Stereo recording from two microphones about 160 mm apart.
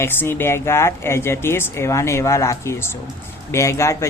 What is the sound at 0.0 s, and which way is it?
Speech, 15° left (ahead or behind).